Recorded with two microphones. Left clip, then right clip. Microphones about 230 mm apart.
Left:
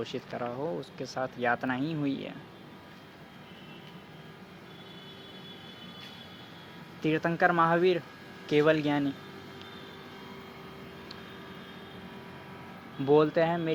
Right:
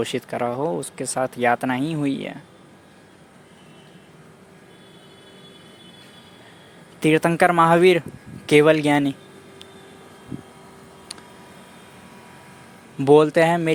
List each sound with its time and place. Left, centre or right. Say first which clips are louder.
0.0 s speech: right 11 dB; right
7.0 s speech: right 9 dB; right
13.1 s speech: right 9 dB; right